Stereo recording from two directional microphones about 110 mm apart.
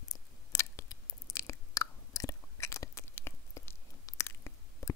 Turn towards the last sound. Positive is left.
turn(degrees=25)  # may be behind; listen again after turning